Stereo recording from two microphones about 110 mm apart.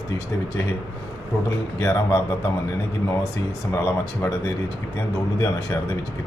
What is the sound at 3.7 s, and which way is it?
Speech, 25° left (ahead or behind).